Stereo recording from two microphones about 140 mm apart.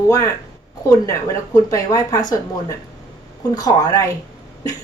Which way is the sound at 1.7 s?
25° left (ahead or behind).